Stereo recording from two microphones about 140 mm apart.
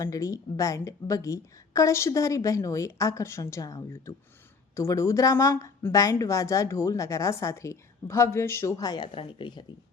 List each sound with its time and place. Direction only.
0.0 s a woman's voice: 25° left (ahead or behind)